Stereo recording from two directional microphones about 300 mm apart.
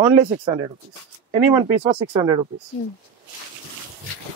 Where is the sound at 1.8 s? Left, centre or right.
Centre.